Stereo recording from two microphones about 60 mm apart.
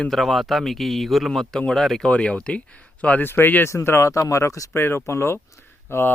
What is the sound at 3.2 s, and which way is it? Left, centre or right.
Speech, left.